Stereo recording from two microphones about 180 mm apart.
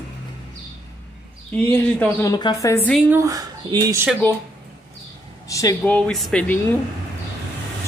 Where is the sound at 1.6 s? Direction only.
10° left (ahead or behind).